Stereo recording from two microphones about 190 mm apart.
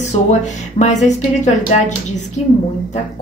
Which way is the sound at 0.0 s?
35° left (ahead or behind).